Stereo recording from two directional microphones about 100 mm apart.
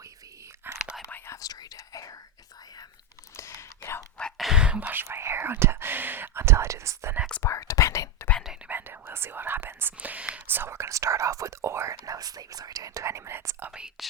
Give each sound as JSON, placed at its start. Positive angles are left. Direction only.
{"t": 0.6, "sound": "whispering", "side_deg": -20}
{"t": 1.3, "sound": "whispering", "side_deg": 35}
{"t": 3.3, "sound": "a sound", "side_deg": 30}
{"t": 4.2, "sound": "whispering", "side_deg": 5}
{"t": 7.4, "sound": "whispering", "side_deg": 30}
{"t": 8.7, "sound": "whispering", "side_deg": -20}
{"t": 13.7, "sound": "whispering", "side_deg": -5}